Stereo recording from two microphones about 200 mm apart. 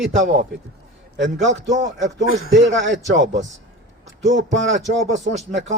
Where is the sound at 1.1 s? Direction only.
65° right (ahead or behind).